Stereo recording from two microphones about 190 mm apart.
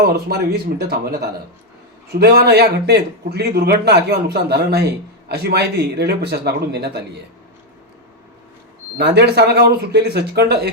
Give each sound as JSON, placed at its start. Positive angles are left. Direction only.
{"t": 0.0, "sound": "a man's voice", "side_deg": -60}
{"t": 9.0, "sound": "a man's voice", "side_deg": -60}